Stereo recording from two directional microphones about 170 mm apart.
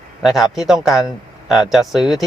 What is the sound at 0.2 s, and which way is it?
Speech, centre (ahead or behind).